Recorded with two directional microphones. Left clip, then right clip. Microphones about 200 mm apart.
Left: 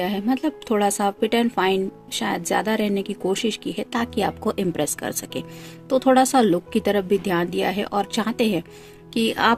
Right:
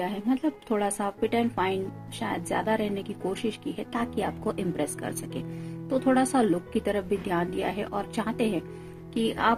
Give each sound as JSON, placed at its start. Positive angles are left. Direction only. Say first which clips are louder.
{"t": 0.0, "sound": "a woman's voice", "louder": "left 5 dB", "side_deg": 50}